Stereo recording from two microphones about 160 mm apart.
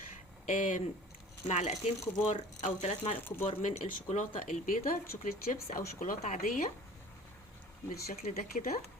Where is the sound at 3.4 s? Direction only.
40° left (ahead or behind).